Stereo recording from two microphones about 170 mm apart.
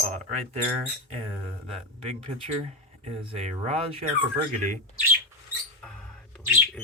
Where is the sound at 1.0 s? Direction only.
40° right (ahead or behind).